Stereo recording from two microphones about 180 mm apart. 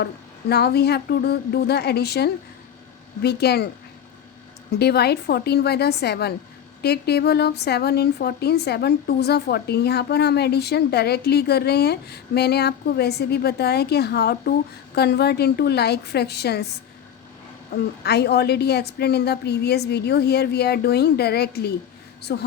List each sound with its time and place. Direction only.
0.0 s speech: 65° left (ahead or behind)
4.8 s speech: 65° left (ahead or behind)
17.7 s speech: 65° left (ahead or behind)